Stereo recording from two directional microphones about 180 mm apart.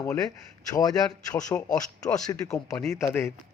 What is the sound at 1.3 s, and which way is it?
Speech, 20° left (ahead or behind).